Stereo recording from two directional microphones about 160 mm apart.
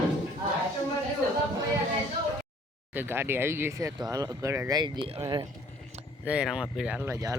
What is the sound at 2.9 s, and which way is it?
Speech, 15° right (ahead or behind).